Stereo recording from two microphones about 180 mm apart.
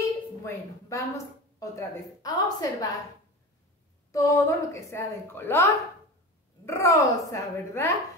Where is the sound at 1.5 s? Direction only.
20° left (ahead or behind).